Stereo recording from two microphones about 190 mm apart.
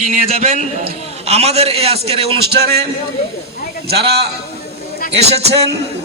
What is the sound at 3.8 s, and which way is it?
Speech, 60° right (ahead or behind).